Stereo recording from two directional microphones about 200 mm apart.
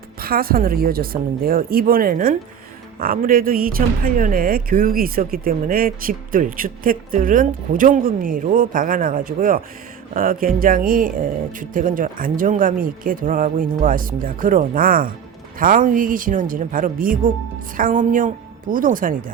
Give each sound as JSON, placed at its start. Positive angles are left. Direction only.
{"t": 0.2, "sound": "speech", "side_deg": -45}